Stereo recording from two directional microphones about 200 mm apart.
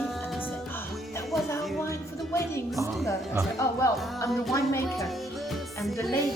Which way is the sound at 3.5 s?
15° left (ahead or behind).